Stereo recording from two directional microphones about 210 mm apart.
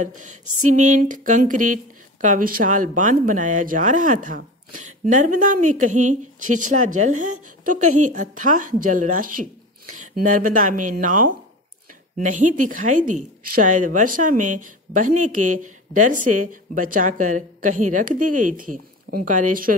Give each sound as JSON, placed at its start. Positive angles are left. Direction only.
{"t": 0.2, "sound": "a woman's voice", "side_deg": -35}